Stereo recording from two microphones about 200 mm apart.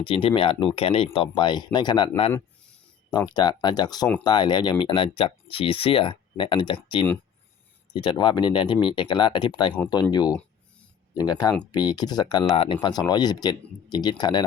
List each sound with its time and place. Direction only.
0.0 s speech: 25° left (ahead or behind)